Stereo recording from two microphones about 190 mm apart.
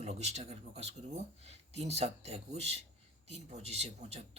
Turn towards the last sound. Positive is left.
turn(degrees=-35)  # may be behind; listen again after turning